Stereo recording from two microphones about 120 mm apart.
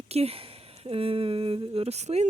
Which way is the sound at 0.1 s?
55° right (ahead or behind).